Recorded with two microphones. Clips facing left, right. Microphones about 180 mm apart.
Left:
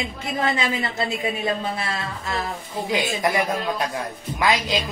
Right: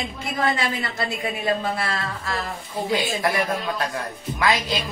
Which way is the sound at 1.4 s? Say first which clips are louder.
Right 1 dB; 20° left (ahead or behind).